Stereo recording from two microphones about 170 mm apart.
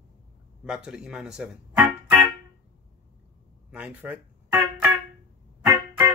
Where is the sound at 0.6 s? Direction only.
5° right (ahead or behind).